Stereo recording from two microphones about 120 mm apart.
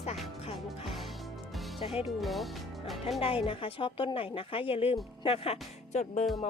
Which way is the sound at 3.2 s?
50° left (ahead or behind).